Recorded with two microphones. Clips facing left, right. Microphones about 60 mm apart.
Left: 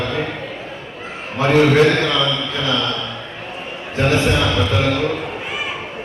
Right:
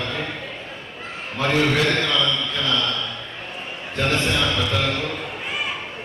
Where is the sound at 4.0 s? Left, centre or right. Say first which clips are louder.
Left 5 dB; centre.